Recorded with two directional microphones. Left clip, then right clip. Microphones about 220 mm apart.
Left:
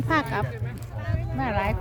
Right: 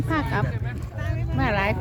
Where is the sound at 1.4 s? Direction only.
40° right (ahead or behind).